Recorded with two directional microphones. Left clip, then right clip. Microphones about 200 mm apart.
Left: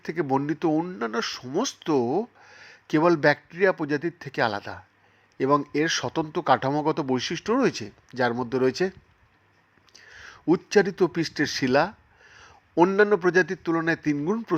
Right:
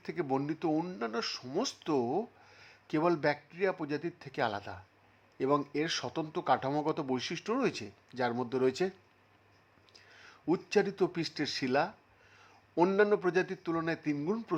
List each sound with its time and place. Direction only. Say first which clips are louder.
0.0 s speech: left 8 dB; 15° left (ahead or behind)
9.9 s a sound: left 10 dB; 15° left (ahead or behind)
13.0 s speech: left 8 dB; 15° left (ahead or behind)
14.2 s speech: left 7 dB; 5° left (ahead or behind)